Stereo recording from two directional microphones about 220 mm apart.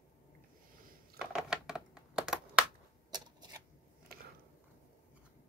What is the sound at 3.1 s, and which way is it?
Shuffling cards, 20° right (ahead or behind).